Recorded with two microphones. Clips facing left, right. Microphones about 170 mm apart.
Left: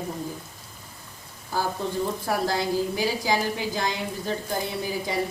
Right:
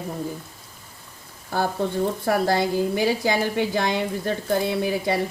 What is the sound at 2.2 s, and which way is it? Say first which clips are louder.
Speech: right 6 dB; 60° right (ahead or behind).